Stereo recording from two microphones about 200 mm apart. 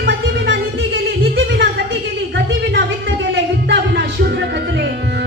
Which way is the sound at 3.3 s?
55° right (ahead or behind).